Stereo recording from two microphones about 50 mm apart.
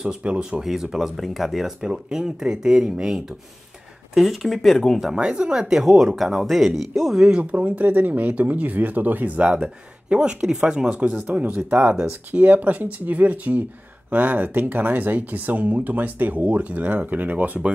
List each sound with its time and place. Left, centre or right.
0.2 s speech: right; by 1.7 s centre
1.8 s speech: centre
5.1 s speech: centre
7.5 s speech: right
9.4 s speech: right